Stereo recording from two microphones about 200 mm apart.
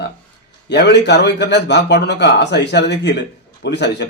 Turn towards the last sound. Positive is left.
turn(degrees=60)  # may be behind; listen again after turning